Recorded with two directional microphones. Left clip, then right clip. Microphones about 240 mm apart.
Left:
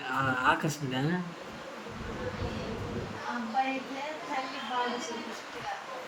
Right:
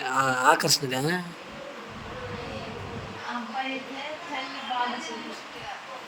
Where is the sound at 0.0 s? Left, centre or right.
Right.